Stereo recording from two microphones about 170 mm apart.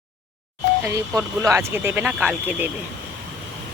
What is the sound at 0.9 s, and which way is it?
Speech, 15° right (ahead or behind).